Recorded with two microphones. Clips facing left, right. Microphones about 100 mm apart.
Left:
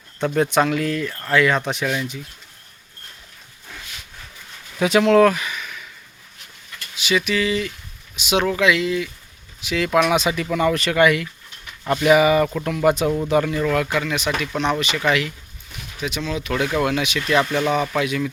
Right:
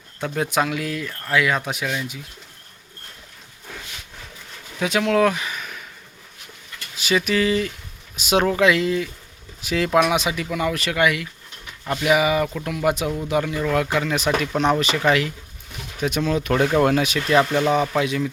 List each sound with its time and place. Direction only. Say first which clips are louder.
0.3 s speech: left 4 dB; 5° right (ahead or behind)
4.8 s speech: left 5 dB; centre (ahead or behind)
5.3 s a sound: left 1 dB; 30° right (ahead or behind)
6.9 s speech: even; 40° right (ahead or behind)
10.0 s speech: left 1 dB; 15° right (ahead or behind)
13.7 s speech: even; 30° right (ahead or behind)
16.0 s speech: right 4 dB; 50° right (ahead or behind)
17.2 s speech: right 1 dB; 30° right (ahead or behind)